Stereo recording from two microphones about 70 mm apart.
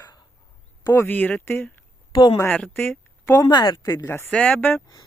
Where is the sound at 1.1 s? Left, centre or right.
Left.